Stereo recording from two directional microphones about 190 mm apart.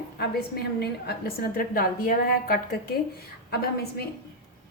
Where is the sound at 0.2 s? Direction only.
55° left (ahead or behind).